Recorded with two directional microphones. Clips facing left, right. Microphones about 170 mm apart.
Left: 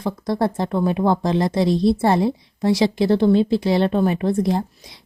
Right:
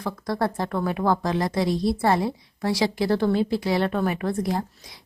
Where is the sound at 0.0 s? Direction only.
25° left (ahead or behind).